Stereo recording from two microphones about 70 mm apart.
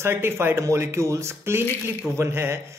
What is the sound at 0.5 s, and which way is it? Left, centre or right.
A man's voice, right.